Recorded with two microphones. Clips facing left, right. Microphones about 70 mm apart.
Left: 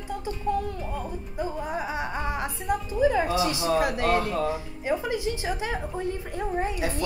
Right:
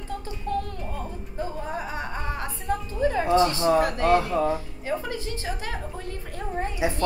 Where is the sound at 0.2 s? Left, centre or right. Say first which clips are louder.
Left 3 dB; centre.